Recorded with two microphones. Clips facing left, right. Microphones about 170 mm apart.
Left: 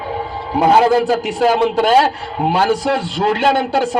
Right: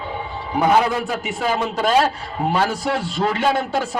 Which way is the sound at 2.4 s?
70° left (ahead or behind).